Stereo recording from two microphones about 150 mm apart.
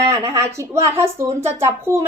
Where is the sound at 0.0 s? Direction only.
20° right (ahead or behind).